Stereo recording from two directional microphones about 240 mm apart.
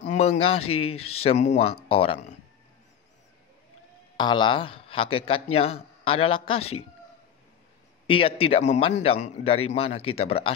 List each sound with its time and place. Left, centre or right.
0.2 s a man's voice: left
4.2 s a man's voice: centre
8.1 s a man's voice: left